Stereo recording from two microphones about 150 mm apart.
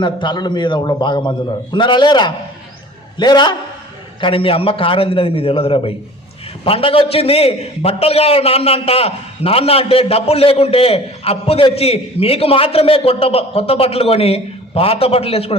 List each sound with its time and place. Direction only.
0.0 s a man's voice: 30° left (ahead or behind)